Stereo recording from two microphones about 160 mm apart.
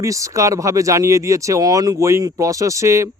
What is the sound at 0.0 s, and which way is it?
Speech, 20° right (ahead or behind).